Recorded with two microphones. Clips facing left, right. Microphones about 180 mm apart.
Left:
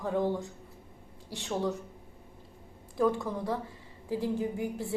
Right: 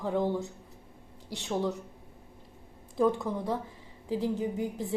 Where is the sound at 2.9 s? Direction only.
20° right (ahead or behind).